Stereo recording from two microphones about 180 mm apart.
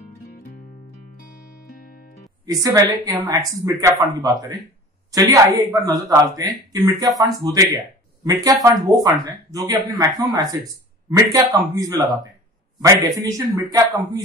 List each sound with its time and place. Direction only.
2.4 s speech: 20° right (ahead or behind)